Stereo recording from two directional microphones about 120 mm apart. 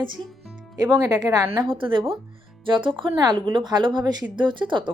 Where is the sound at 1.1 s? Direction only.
30° right (ahead or behind).